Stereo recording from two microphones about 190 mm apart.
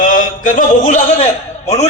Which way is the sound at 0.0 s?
45° left (ahead or behind).